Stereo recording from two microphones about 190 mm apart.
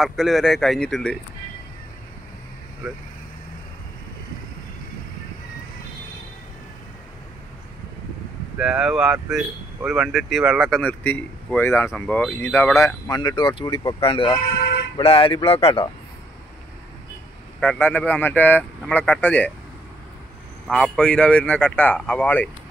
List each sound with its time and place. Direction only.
0.0 s speech: centre (ahead or behind)
8.5 s speech: centre (ahead or behind)
12.8 s speech: 20° left (ahead or behind)
17.6 s speech: 10° left (ahead or behind)
20.6 s speech: centre (ahead or behind)